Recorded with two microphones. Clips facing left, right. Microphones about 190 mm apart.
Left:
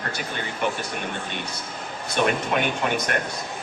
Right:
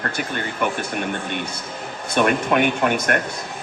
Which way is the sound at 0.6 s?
55° right (ahead or behind).